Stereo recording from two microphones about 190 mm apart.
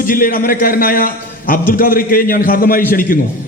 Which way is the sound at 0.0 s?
45° left (ahead or behind).